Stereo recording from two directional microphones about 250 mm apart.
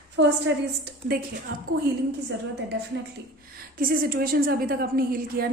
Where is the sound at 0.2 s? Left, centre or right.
Right.